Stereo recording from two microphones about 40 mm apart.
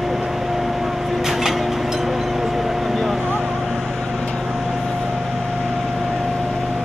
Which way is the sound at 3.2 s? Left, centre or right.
Right.